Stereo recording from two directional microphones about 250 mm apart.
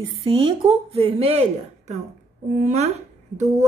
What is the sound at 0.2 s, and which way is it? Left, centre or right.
A woman's voice, centre.